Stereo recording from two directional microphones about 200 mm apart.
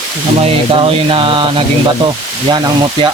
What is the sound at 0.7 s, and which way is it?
Speech, 25° right (ahead or behind).